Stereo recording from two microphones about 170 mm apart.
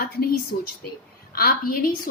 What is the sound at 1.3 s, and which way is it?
Speech, 60° left (ahead or behind).